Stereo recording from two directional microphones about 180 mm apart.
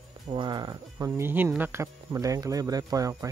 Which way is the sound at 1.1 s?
10° right (ahead or behind).